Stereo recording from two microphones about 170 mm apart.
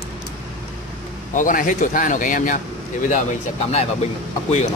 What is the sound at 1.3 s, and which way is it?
Speech, 50° left (ahead or behind).